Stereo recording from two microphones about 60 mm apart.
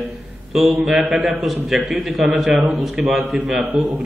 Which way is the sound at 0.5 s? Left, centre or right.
Centre.